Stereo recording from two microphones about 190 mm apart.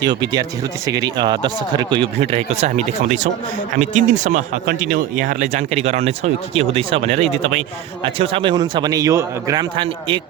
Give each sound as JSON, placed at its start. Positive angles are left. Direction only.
{"t": 0.0, "sound": "speech", "side_deg": -25}